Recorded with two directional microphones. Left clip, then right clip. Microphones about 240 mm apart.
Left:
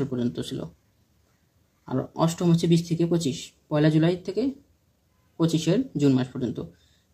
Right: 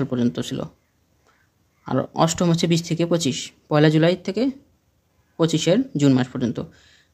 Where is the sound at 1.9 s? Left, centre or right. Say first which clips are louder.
Right 6 dB; right.